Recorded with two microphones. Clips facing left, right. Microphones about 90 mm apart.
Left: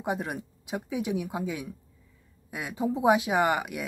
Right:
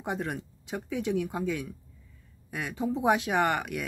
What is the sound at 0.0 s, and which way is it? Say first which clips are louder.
Speech: left 2 dB; 10° left (ahead or behind).